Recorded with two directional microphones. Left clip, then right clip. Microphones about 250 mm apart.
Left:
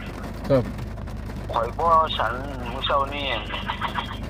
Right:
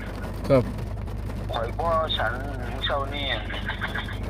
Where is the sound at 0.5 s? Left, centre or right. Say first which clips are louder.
Even; centre.